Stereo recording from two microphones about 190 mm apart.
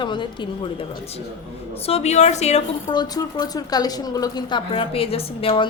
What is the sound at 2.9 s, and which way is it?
A woman's voice, 20° left (ahead or behind).